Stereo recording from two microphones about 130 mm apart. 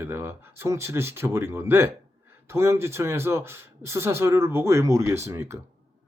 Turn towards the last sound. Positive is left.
turn(degrees=-20)  # may be behind; listen again after turning